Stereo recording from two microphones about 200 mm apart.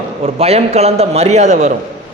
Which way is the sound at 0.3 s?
30° right (ahead or behind).